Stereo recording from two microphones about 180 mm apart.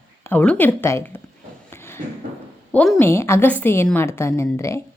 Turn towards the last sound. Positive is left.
turn(degrees=15)  # may be behind; listen again after turning